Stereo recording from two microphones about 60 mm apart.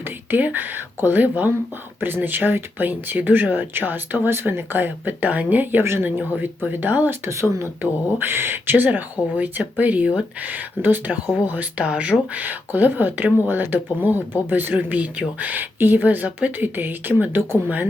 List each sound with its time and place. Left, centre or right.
0.3 s speech: right